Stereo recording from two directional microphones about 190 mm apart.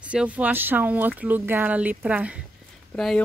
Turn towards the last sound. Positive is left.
turn(degrees=0)  # may be behind; listen again after turning